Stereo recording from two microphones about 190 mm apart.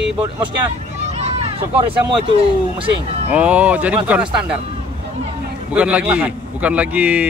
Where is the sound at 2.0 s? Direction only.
25° right (ahead or behind).